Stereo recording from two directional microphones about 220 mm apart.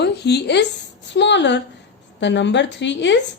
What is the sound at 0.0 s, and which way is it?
A woman's voice, 50° left (ahead or behind).